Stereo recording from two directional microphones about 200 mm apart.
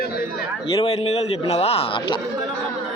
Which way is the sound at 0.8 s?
30° left (ahead or behind).